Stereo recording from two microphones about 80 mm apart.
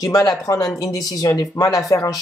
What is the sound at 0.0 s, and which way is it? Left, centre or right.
Speech, left.